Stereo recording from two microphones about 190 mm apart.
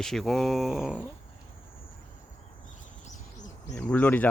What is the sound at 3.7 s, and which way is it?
Speech, 5° left (ahead or behind).